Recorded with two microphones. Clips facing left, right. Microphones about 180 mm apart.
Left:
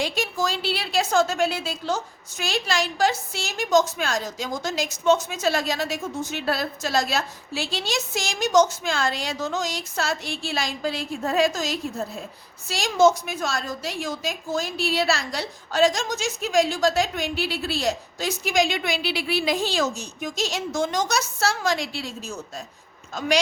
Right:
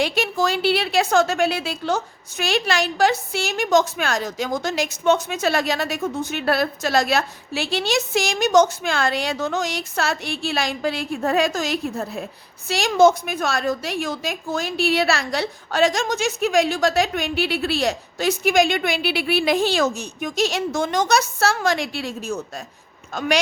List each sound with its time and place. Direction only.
0.0 s a woman's voice: 65° right (ahead or behind)